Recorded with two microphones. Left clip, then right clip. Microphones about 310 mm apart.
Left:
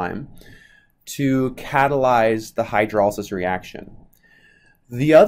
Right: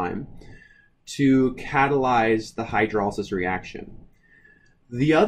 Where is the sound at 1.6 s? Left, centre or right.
Left.